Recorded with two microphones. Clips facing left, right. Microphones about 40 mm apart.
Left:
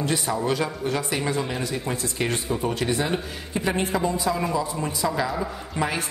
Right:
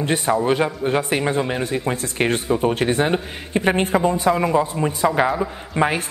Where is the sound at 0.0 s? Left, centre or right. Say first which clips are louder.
Right 6 dB; right.